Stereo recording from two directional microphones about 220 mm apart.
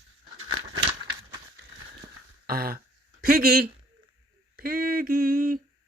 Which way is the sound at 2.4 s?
40° right (ahead or behind).